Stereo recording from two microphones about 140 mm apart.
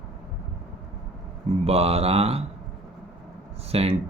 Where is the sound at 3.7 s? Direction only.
45° right (ahead or behind).